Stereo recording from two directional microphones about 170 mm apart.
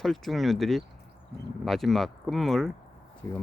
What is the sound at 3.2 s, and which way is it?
Speech, 15° left (ahead or behind).